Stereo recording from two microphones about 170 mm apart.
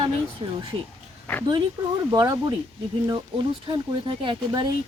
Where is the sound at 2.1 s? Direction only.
20° right (ahead or behind).